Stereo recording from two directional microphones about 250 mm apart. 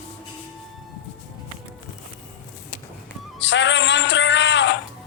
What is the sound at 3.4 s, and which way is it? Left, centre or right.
Music, left.